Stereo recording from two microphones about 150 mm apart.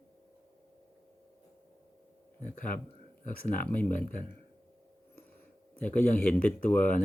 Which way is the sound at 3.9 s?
60° left (ahead or behind).